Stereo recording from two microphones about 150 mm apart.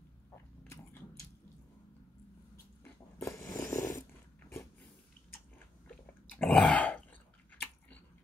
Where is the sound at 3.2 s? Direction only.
20° left (ahead or behind).